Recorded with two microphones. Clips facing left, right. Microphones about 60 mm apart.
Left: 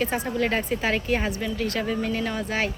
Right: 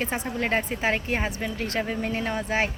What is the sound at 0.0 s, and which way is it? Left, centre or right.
A man's voice, right.